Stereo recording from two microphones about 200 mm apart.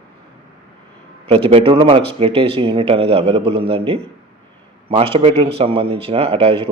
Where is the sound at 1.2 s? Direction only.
30° right (ahead or behind).